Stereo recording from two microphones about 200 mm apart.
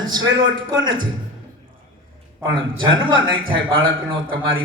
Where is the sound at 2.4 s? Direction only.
75° right (ahead or behind).